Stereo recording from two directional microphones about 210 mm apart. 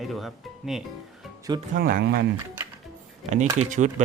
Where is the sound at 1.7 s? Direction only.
45° right (ahead or behind).